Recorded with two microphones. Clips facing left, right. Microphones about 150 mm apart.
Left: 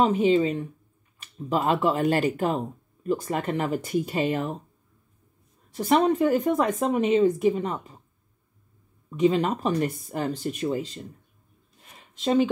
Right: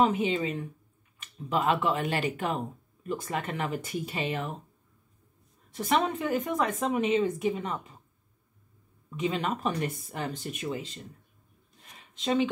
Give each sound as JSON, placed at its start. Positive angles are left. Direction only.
{"t": 0.0, "sound": "speech", "side_deg": 35}
{"t": 5.8, "sound": "speech", "side_deg": 35}
{"t": 9.1, "sound": "speech", "side_deg": 35}
{"t": 12.0, "sound": "a sound", "side_deg": 40}